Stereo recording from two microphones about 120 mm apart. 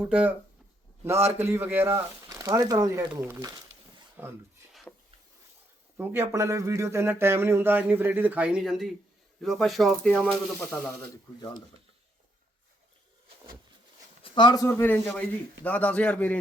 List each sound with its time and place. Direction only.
0.0 s speech: 10° right (ahead or behind); by 3.0 s 30° right (ahead or behind)
3.0 s speech: 15° right (ahead or behind)
4.7 s a sound: centre (ahead or behind)
6.0 s speech: 20° right (ahead or behind); by 10.9 s centre (ahead or behind)
11.0 s speech: 35° left (ahead or behind)
14.2 s a sound: 40° left (ahead or behind)
14.7 s a man's voice: 15° left (ahead or behind)